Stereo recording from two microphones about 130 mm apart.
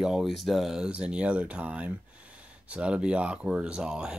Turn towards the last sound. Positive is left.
turn(degrees=-5)  # may be behind; listen again after turning